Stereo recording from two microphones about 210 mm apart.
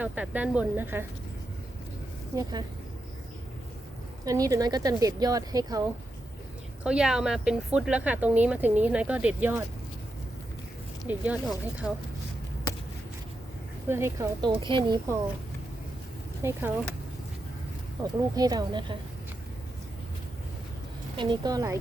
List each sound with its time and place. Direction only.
0.0 s speech: 5° right (ahead or behind)
2.3 s speech: 15° right (ahead or behind)
4.3 s speech: 15° right (ahead or behind)
6.8 s speech: 5° right (ahead or behind)
11.3 s speech: 5° right (ahead or behind)
13.8 s speech: 10° right (ahead or behind)
16.4 s speech: 10° right (ahead or behind)
18.0 s speech: 20° right (ahead or behind)
21.2 s speech: 20° right (ahead or behind)